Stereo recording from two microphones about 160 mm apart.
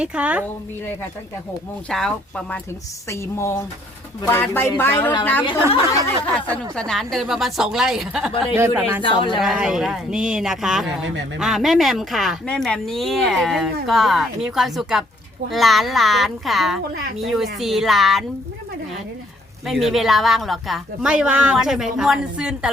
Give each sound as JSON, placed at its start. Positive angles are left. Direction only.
{"t": 0.0, "sound": "speech", "side_deg": -5}
{"t": 1.9, "sound": "speech", "side_deg": 5}
{"t": 3.1, "sound": "speech", "side_deg": 15}
{"t": 8.5, "sound": "speech", "side_deg": -15}
{"t": 9.0, "sound": "speech", "side_deg": 30}
{"t": 9.4, "sound": "speech", "side_deg": -5}
{"t": 19.6, "sound": "speech", "side_deg": 0}